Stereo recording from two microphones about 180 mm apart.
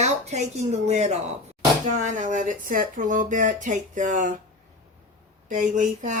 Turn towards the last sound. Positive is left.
turn(degrees=-45)  # may be behind; listen again after turning